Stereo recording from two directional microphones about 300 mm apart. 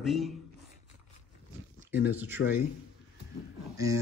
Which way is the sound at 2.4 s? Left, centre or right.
Left.